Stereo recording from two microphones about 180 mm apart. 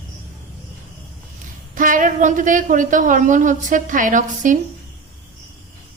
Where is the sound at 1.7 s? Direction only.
50° right (ahead or behind).